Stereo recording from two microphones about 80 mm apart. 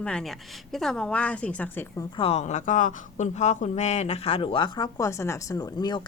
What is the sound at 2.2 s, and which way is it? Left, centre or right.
Speech, left.